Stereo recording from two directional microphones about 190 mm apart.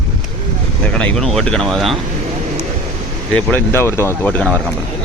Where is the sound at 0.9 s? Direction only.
5° left (ahead or behind).